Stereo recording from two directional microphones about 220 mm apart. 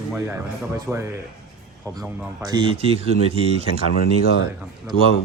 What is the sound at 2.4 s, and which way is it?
Speech, 20° right (ahead or behind).